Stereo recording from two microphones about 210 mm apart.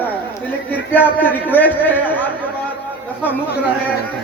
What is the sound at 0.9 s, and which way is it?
A man's voice, 10° left (ahead or behind).